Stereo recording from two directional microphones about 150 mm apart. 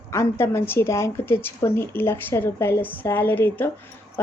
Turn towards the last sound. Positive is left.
turn(degrees=15)  # may be behind; listen again after turning